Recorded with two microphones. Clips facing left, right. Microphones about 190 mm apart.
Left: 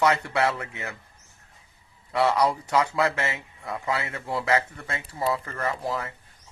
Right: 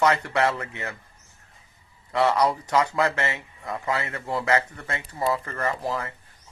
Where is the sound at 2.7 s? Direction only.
15° right (ahead or behind).